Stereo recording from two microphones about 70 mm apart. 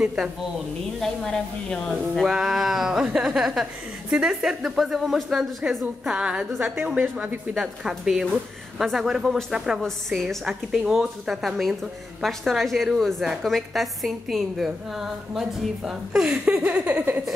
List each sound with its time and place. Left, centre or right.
0.0 s a woman's voice: centre
0.9 s speech: centre
2.2 s a woman's voice: centre
7.5 s a woman's voice: centre